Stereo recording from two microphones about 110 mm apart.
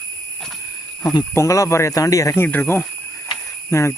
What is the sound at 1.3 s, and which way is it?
Speech, 25° left (ahead or behind).